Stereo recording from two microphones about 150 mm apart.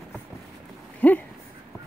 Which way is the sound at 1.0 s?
10° left (ahead or behind).